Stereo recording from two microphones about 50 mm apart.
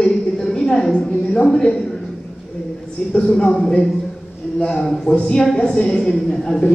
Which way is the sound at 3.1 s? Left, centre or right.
Centre.